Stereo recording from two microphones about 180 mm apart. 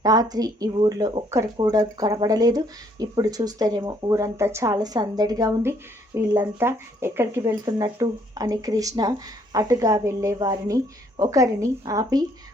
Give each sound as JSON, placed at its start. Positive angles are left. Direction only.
{"t": 0.0, "sound": "speech", "side_deg": -20}